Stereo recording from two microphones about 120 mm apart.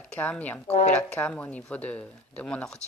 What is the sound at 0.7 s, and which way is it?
Goat, 60° left (ahead or behind).